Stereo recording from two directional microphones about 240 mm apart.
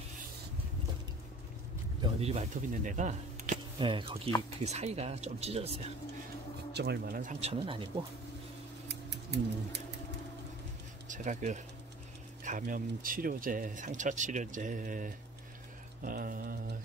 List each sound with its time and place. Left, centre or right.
2.0 s speech: right
3.7 s speech: right
6.7 s speech: right
9.1 s speech: right
11.1 s speech: right